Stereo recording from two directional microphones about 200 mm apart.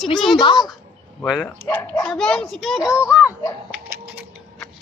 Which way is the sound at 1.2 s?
5° left (ahead or behind).